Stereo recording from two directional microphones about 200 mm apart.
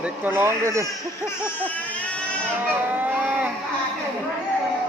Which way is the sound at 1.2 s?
10° left (ahead or behind).